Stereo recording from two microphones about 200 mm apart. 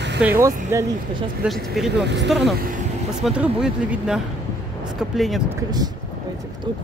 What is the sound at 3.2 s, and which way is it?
Speech, 5° right (ahead or behind).